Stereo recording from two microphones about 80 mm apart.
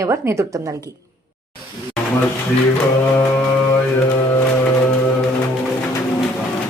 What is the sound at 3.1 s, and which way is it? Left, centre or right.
Mantra, left.